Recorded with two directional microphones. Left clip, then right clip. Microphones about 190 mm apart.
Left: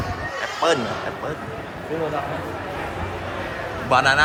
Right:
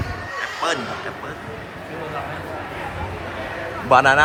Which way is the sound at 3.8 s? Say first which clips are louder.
Right 4 dB; centre (ahead or behind).